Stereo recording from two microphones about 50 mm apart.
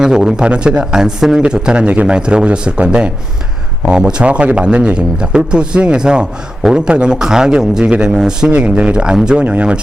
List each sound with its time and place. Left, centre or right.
0.0 s speech: centre
4.2 s speech: right